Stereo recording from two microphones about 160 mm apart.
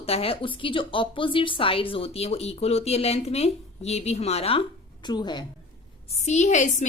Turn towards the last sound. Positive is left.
turn(degrees=50)  # may be behind; listen again after turning